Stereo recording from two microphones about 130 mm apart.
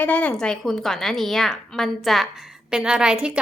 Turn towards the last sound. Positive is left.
turn(degrees=-10)  # may be behind; listen again after turning